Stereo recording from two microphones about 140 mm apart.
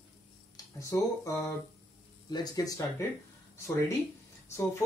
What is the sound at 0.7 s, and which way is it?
Speech, 25° left (ahead or behind).